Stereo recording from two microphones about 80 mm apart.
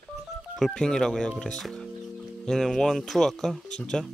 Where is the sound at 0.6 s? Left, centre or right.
Centre.